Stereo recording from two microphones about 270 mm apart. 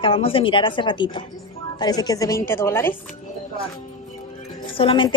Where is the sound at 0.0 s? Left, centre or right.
Centre.